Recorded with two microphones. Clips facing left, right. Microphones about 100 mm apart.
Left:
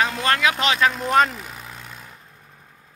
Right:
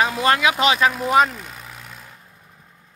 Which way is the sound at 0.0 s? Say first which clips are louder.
Right 2 dB; 10° right (ahead or behind).